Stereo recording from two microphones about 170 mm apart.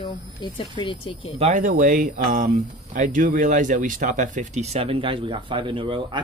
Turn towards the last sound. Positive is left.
turn(degrees=-30)  # may be behind; listen again after turning